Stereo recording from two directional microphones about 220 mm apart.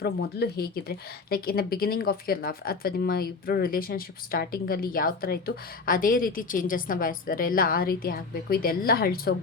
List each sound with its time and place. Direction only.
0.0 s speech: 45° left (ahead or behind)